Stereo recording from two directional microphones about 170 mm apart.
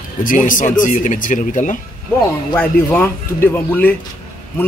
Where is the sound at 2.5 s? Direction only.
10° left (ahead or behind).